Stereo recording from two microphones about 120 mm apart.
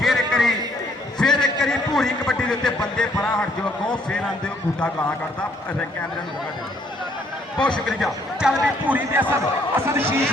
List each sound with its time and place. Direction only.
0.0 s a sound: centre (ahead or behind)
4.1 s speech: 10° left (ahead or behind)
7.9 s speech: 5° right (ahead or behind)
9.7 s a man's voice: 20° right (ahead or behind)